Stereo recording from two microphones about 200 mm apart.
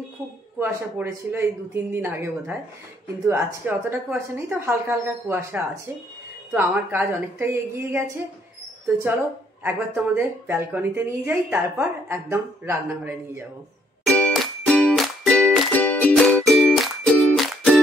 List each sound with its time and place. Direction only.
0.6 s speech: 15° right (ahead or behind)
9.0 s speech: 10° right (ahead or behind)
14.0 s music: 5° left (ahead or behind)